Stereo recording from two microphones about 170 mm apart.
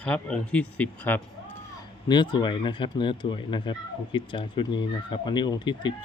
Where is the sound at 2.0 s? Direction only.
25° left (ahead or behind).